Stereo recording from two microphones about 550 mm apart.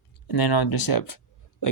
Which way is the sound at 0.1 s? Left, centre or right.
Left.